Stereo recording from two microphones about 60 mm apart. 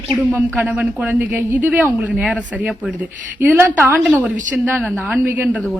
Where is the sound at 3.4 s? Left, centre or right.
Right.